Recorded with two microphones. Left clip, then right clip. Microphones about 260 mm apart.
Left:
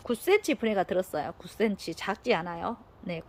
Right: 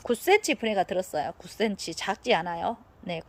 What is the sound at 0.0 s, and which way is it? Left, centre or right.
A woman's voice, centre.